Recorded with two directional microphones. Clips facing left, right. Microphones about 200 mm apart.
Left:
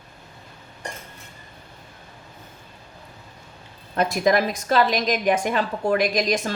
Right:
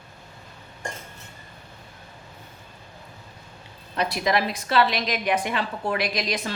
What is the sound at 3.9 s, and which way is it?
A woman's voice, 45° left (ahead or behind).